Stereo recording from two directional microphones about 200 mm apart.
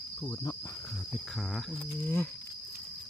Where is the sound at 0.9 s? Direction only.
Centre (ahead or behind).